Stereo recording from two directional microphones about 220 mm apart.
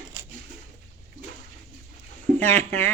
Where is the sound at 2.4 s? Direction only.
10° left (ahead or behind).